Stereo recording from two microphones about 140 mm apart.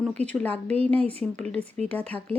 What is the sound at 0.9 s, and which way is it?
Speech, 10° left (ahead or behind).